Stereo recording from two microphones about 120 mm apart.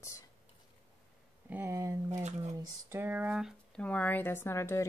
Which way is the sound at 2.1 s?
75° right (ahead or behind).